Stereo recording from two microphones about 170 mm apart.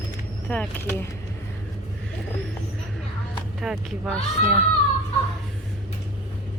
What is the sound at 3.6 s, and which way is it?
Speech, centre (ahead or behind).